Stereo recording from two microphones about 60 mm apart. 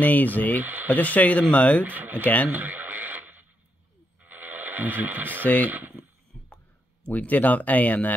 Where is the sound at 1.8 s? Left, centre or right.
Right.